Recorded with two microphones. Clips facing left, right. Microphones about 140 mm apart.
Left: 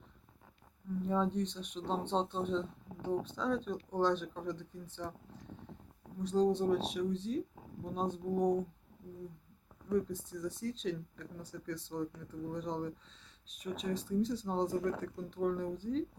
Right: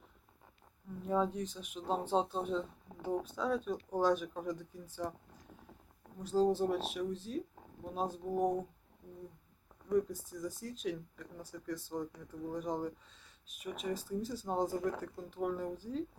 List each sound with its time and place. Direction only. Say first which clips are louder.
1.0 s speech: even; 5° right (ahead or behind)
9.9 s speech: right 1 dB; 10° right (ahead or behind)